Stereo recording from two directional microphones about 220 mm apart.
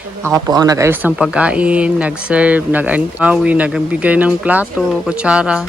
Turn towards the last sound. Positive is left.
turn(degrees=-5)  # may be behind; listen again after turning